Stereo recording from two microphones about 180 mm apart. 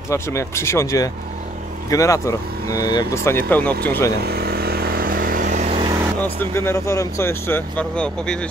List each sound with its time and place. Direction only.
0.1 s speech: 15° left (ahead or behind)
4.2 s vehicle: 60° right (ahead or behind); by 5.8 s 45° right (ahead or behind)
6.2 s speech: 15° left (ahead or behind)